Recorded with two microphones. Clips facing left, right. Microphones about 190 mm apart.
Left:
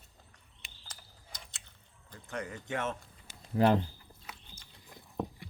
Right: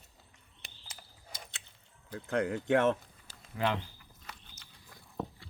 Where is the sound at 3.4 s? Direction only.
40° left (ahead or behind).